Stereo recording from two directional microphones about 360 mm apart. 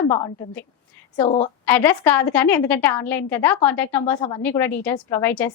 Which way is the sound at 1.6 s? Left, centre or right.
Centre.